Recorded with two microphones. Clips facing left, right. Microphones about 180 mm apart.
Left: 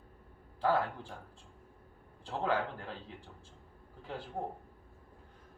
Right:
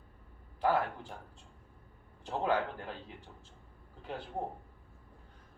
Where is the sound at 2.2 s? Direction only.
20° right (ahead or behind).